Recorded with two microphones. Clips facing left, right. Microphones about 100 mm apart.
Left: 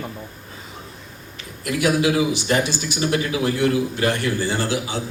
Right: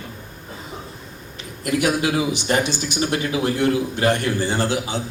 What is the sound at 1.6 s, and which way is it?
A man's voice, 25° right (ahead or behind).